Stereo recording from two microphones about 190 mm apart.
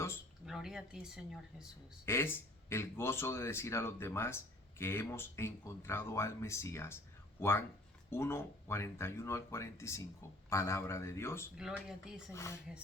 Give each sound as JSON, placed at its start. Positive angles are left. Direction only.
{"t": 0.4, "sound": "speech", "side_deg": -5}
{"t": 2.0, "sound": "speech", "side_deg": 15}
{"t": 11.5, "sound": "speech", "side_deg": -5}
{"t": 12.3, "sound": "speech", "side_deg": 15}